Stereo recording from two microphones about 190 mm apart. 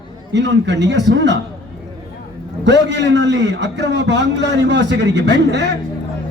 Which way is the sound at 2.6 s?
65° right (ahead or behind).